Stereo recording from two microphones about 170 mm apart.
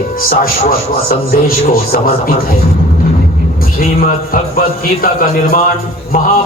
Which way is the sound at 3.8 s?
60° left (ahead or behind).